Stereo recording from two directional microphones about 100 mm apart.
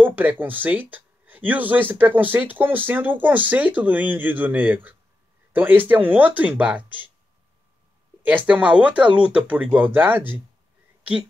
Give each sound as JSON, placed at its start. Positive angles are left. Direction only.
{"t": 0.0, "sound": "speech", "side_deg": -20}
{"t": 8.3, "sound": "speech", "side_deg": -15}